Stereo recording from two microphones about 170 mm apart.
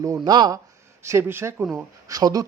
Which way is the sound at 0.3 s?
25° right (ahead or behind).